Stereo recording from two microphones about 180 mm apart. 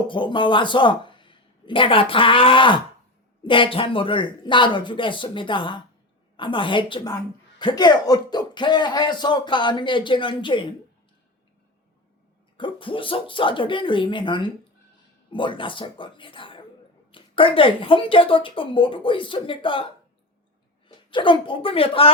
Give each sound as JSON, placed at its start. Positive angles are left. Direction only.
{"t": 0.1, "sound": "speech", "side_deg": 25}
{"t": 12.5, "sound": "speech", "side_deg": 30}